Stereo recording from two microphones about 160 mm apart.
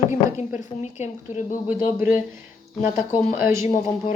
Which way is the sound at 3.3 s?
15° right (ahead or behind).